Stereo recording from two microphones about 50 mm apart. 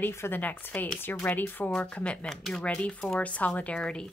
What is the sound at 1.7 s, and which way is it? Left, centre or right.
Speech, left.